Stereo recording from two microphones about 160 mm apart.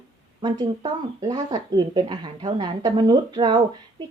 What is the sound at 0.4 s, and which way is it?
A woman's voice, 25° right (ahead or behind).